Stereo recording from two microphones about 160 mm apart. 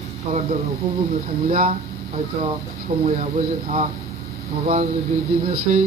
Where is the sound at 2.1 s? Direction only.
40° right (ahead or behind).